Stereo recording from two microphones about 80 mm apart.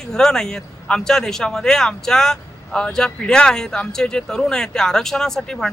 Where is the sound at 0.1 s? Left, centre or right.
Centre.